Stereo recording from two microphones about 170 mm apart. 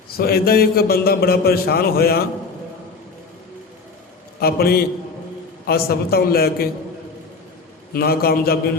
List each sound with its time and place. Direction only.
0.2 s a man's voice: 65° left (ahead or behind)
4.4 s a man's voice: 65° left (ahead or behind)
7.9 s a man's voice: 60° left (ahead or behind)